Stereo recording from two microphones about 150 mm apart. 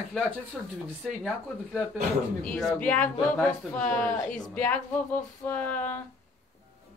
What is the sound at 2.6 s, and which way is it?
Speech, centre (ahead or behind).